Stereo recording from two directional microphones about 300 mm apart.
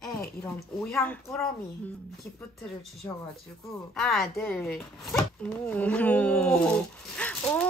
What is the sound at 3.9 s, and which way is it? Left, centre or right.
Speech, centre.